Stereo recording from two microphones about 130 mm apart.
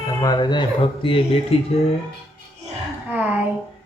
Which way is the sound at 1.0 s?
45° left (ahead or behind).